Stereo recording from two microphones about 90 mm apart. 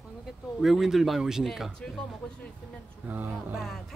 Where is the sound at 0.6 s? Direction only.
Centre (ahead or behind).